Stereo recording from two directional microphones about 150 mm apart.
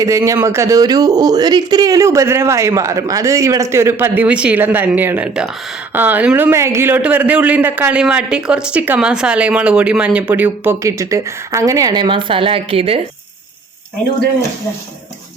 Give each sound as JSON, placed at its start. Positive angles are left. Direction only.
{"t": 0.0, "sound": "a man's voice", "side_deg": -20}